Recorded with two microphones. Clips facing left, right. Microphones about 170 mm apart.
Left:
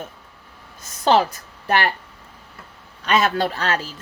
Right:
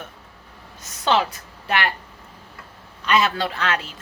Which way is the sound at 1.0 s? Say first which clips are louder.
Left 4 dB; 40° left (ahead or behind).